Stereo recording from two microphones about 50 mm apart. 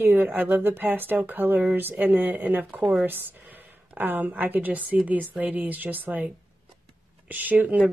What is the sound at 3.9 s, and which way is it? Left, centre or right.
A woman's voice, right.